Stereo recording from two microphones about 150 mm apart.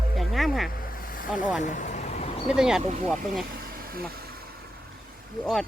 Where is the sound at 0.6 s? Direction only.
75° left (ahead or behind).